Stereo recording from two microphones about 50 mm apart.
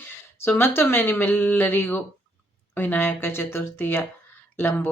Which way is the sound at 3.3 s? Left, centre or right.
Left.